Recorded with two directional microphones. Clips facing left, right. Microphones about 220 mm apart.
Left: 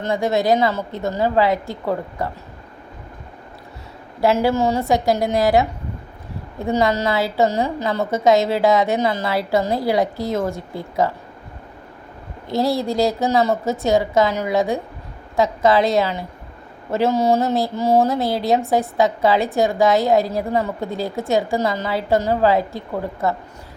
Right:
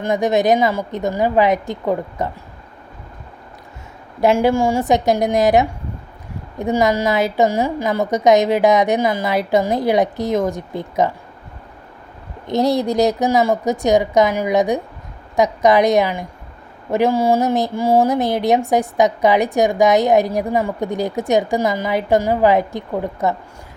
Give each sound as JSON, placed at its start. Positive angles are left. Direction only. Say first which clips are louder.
{"t": 0.0, "sound": "a woman's voice", "louder": "right 3 dB", "side_deg": -20}
{"t": 4.2, "sound": "a woman's voice", "louder": "right 2 dB", "side_deg": -20}
{"t": 12.5, "sound": "a woman's voice", "louder": "right 3 dB", "side_deg": -20}